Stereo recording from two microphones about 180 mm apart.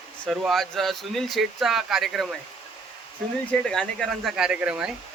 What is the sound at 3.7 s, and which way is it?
Speech, centre (ahead or behind).